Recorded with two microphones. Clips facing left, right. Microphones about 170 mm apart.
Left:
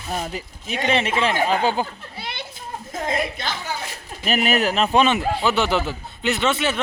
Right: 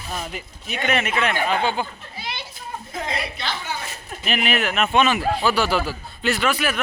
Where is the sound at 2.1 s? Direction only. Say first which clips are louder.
Even; 60° left (ahead or behind).